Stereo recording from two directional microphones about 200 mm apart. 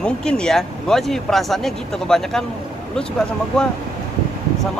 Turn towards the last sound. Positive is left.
turn(degrees=5)  # may be behind; listen again after turning